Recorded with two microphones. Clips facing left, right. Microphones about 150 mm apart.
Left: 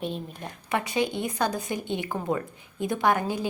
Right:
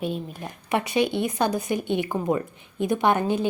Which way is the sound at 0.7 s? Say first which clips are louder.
Right 4 dB; 20° right (ahead or behind).